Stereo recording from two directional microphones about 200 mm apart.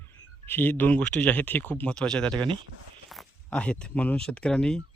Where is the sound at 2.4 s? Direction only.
25° right (ahead or behind).